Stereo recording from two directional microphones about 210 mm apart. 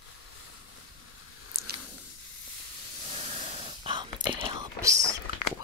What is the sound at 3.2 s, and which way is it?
Whispering, 30° right (ahead or behind).